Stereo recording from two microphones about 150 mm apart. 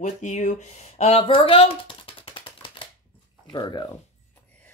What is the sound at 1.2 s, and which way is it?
Typing, 35° left (ahead or behind).